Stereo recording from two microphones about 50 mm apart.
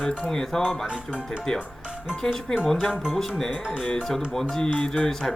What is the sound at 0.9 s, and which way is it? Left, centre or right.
Speech, right.